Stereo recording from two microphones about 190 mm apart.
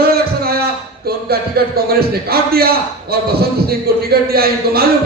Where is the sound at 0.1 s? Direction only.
55° right (ahead or behind).